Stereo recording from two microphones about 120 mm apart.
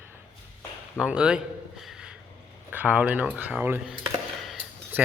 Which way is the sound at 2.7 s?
15° right (ahead or behind).